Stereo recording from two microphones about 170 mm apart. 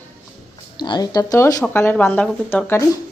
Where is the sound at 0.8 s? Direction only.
25° left (ahead or behind).